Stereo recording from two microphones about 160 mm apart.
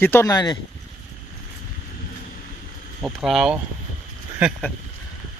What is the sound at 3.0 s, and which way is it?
Speech, centre (ahead or behind).